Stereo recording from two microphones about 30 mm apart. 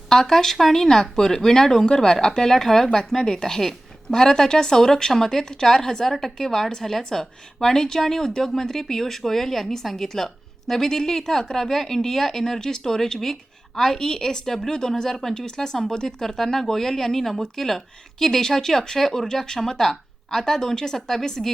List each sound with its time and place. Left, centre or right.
0.1 s a woman's voice: centre
15.4 s a woman's voice: left
19.3 s a woman's voice: centre